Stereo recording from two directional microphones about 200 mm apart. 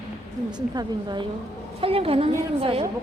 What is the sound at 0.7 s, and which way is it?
A woman's voice, 20° right (ahead or behind).